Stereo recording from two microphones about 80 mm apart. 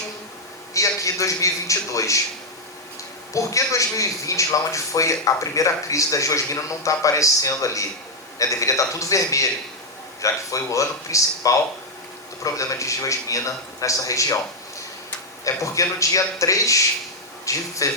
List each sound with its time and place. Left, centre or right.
0.7 s a man's voice: left
3.3 s speech: left
15.4 s a man's voice: left